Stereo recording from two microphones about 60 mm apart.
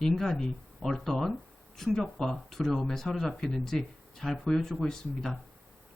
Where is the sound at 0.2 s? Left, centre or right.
Centre.